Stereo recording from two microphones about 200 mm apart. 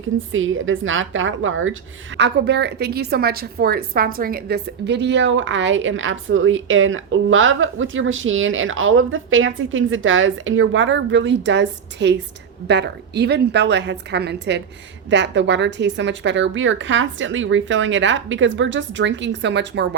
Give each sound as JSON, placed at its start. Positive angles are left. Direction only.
{"t": 0.3, "sound": "a woman's voice", "side_deg": -80}
{"t": 2.1, "sound": "a woman's voice", "side_deg": -60}